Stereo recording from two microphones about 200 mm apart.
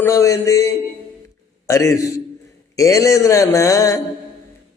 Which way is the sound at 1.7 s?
15° left (ahead or behind).